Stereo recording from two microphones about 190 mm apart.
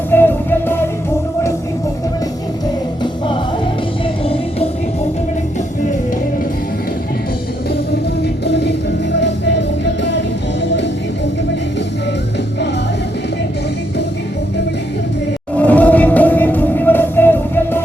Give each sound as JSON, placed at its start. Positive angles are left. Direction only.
{"t": 0.1, "sound": "music", "side_deg": 10}
{"t": 8.2, "sound": "music", "side_deg": 65}
{"t": 15.5, "sound": "music", "side_deg": 10}